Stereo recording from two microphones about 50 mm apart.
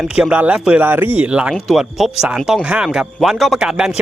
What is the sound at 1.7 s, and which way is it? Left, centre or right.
Speech, centre.